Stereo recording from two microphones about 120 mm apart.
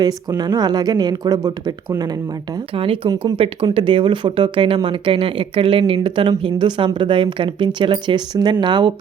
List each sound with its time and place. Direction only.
0.0 s speech: 35° right (ahead or behind)
2.7 s speech: 50° right (ahead or behind)